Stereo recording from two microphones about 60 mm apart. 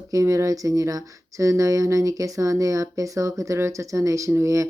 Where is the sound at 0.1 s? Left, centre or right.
Right.